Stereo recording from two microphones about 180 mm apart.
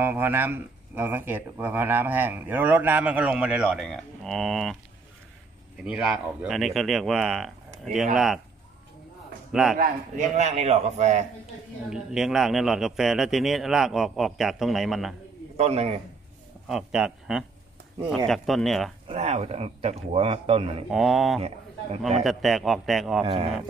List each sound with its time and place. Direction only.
0.0 s speech: 10° right (ahead or behind)
5.9 s a man's voice: 5° right (ahead or behind)
9.5 s a man's voice: centre (ahead or behind)
10.3 s speech: 40° right (ahead or behind)
11.9 s a man's voice: 5° right (ahead or behind)
15.5 s speech: 35° right (ahead or behind)
16.6 s a man's voice: 5° right (ahead or behind)
19.0 s speech: 35° right (ahead or behind)
20.9 s a man's voice: centre (ahead or behind)
21.4 s speech: 35° right (ahead or behind)
22.2 s a man's voice: centre (ahead or behind)
23.2 s speech: 30° right (ahead or behind)